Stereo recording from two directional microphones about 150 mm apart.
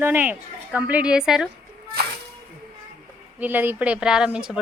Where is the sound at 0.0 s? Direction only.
15° right (ahead or behind).